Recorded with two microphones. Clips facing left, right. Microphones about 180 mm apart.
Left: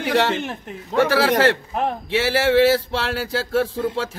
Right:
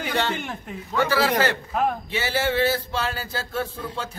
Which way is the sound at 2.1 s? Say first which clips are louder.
Left 7 dB; 90° left.